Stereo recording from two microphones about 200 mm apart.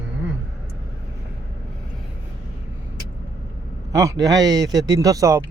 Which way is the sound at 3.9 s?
15° right (ahead or behind).